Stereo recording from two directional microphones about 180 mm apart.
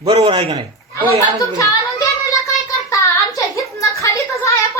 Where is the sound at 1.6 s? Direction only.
20° left (ahead or behind).